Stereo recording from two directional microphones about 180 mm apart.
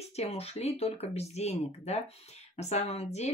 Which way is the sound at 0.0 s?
35° left (ahead or behind).